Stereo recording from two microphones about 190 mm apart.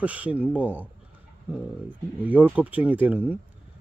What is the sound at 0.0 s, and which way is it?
Speech, 5° right (ahead or behind).